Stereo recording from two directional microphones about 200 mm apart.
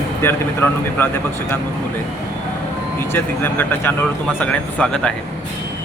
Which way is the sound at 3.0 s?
10° left (ahead or behind).